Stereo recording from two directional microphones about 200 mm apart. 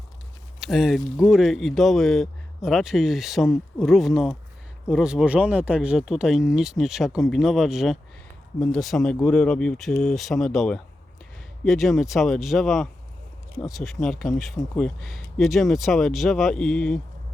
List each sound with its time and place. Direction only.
0.6 s speech: centre (ahead or behind)